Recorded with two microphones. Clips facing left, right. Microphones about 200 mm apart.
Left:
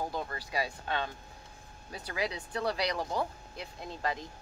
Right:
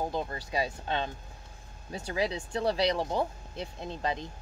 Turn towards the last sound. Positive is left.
turn(degrees=-25)  # may be behind; listen again after turning